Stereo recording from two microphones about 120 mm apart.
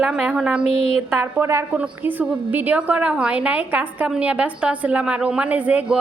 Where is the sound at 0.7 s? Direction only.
55° left (ahead or behind).